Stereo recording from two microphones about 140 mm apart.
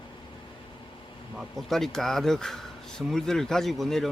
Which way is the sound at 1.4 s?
Centre (ahead or behind).